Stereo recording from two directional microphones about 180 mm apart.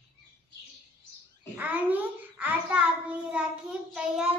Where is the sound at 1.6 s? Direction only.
10° right (ahead or behind).